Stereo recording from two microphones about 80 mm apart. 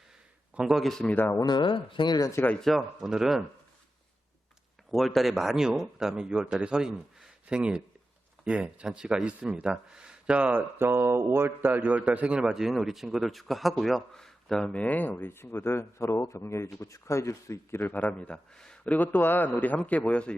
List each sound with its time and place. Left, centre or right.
0.5 s speech: centre
1.0 s speech: left
1.5 s speech: left
2.6 s speech: centre
4.9 s speech: centre
18.9 s speech: centre